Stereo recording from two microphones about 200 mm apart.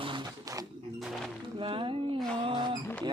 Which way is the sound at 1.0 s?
Centre (ahead or behind).